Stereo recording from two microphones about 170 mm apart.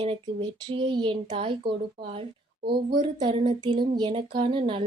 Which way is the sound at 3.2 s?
25° right (ahead or behind).